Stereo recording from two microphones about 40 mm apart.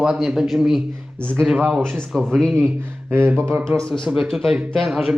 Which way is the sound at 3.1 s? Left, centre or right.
Right.